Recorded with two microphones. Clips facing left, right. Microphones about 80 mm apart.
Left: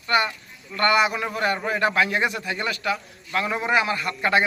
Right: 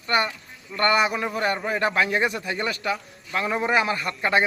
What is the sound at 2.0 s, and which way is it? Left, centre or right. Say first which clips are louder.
A man's voice: even; right.